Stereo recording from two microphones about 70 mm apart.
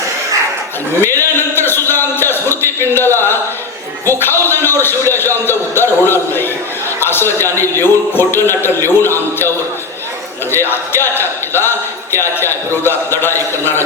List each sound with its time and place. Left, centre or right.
1.0 s a man's voice: left
10.5 s a man's voice: left